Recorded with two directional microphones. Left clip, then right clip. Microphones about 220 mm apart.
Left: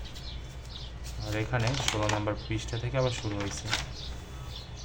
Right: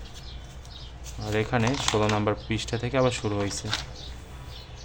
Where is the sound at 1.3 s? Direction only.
40° right (ahead or behind).